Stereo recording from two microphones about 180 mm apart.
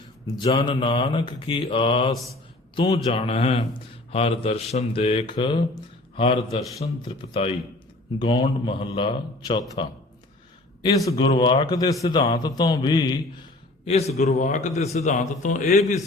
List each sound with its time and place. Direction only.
0.3 s speech: 30° left (ahead or behind)
2.7 s a man's voice: 20° left (ahead or behind)
3.2 s speech: 35° left (ahead or behind)
11.1 s speech: 30° left (ahead or behind)
13.8 s a man's voice: 35° left (ahead or behind)